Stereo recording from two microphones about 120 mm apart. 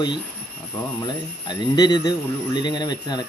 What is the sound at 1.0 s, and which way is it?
Speech, 40° left (ahead or behind).